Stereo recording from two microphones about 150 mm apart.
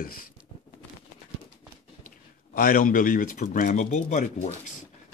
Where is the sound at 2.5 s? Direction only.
70° left (ahead or behind); by 4.6 s 50° left (ahead or behind).